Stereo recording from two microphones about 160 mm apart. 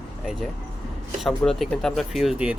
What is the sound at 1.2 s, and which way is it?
Speech, centre (ahead or behind).